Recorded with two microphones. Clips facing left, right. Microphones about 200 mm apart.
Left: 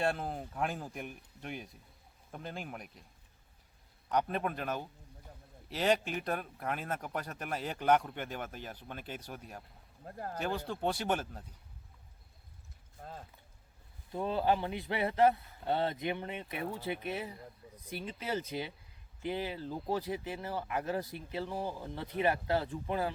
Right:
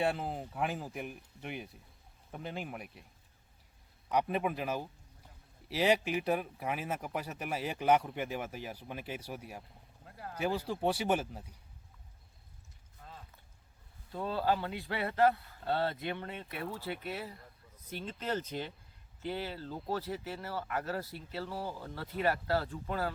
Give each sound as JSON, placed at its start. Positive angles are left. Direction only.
{"t": 0.0, "sound": "speech", "side_deg": -5}
{"t": 4.1, "sound": "speech", "side_deg": -5}
{"t": 10.1, "sound": "speech", "side_deg": 45}
{"t": 10.4, "sound": "speech", "side_deg": -5}
{"t": 13.0, "sound": "a sound", "side_deg": 45}
{"t": 14.1, "sound": "speech", "side_deg": 20}